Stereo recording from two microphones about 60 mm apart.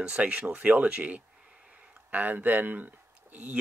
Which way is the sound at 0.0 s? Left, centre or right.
Centre.